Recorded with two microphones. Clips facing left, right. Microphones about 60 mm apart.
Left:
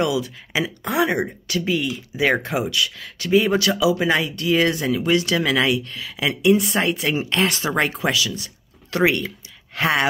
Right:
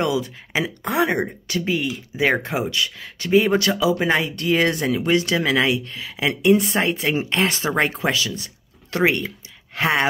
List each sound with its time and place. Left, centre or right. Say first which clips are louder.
0.0 s speech: even; right